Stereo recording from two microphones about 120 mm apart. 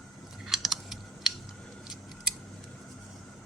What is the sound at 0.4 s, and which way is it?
Computer keyboard, centre (ahead or behind).